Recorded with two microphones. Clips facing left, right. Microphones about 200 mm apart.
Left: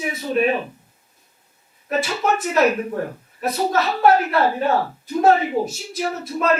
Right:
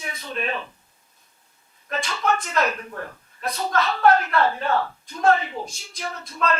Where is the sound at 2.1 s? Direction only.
25° left (ahead or behind).